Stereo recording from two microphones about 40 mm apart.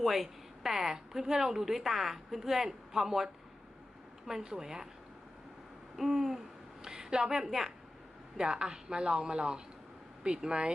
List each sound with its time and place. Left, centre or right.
0.0 s speech: centre
4.3 s speech: centre
6.0 s a woman's voice: centre